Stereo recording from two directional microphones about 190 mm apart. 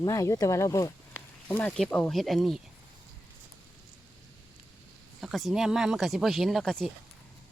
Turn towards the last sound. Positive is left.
turn(degrees=0)  # may be behind; listen again after turning